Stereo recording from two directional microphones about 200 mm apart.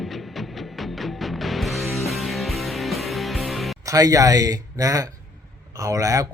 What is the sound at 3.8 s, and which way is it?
A man's voice, 15° right (ahead or behind).